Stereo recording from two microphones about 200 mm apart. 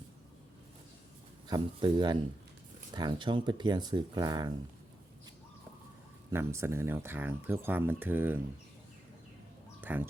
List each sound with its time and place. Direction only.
1.5 s speech: 20° right (ahead or behind)
6.3 s speech: 15° right (ahead or behind)
9.8 s speech: 10° right (ahead or behind)